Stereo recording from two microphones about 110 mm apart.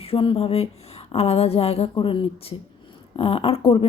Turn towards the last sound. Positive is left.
turn(degrees=60)  # may be behind; listen again after turning